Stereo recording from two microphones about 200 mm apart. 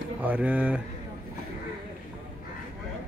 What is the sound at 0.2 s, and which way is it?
Speech, 5° right (ahead or behind).